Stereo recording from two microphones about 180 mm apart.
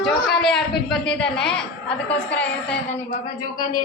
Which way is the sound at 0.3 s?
5° left (ahead or behind).